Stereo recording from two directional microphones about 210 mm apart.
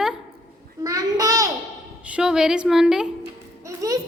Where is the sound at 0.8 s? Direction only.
15° right (ahead or behind).